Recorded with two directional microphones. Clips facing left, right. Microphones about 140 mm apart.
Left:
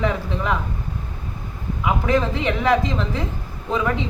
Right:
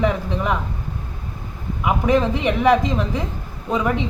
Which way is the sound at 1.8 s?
15° right (ahead or behind).